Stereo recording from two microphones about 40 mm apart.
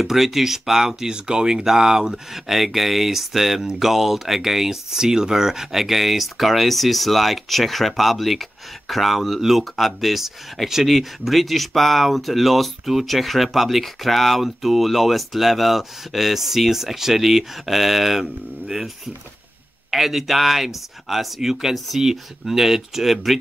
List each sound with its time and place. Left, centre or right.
0.0 s speech: centre
19.9 s speech: centre